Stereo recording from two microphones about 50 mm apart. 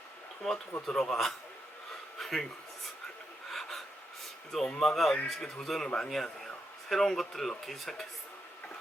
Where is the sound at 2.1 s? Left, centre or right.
Centre.